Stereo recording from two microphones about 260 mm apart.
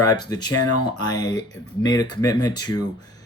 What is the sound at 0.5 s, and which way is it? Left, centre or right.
Speech, left.